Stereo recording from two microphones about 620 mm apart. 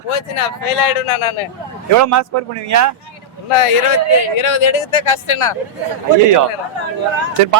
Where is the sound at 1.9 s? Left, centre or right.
Right.